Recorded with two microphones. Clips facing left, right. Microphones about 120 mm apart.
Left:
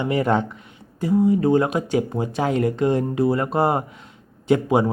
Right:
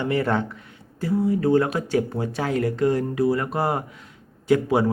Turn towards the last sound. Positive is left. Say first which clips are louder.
# left 1 dB
turn(degrees=20)  # may be behind; listen again after turning